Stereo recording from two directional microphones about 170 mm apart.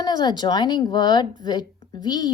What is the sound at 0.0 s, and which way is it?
A woman's voice, 25° left (ahead or behind).